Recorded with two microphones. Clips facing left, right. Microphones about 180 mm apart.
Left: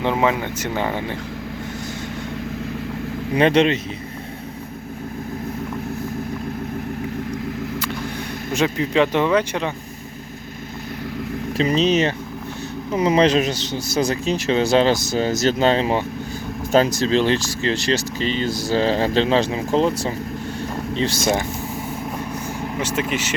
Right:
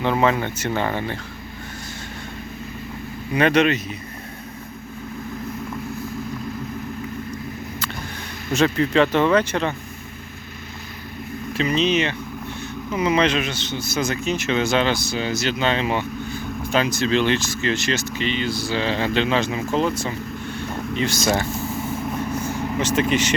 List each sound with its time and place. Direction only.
0.0 s speech: 15° left (ahead or behind)
3.3 s speech: 30° left (ahead or behind)
8.5 s speech: 15° left (ahead or behind)
11.5 s speech: 35° left (ahead or behind)
22.4 s vehicle: 10° left (ahead or behind)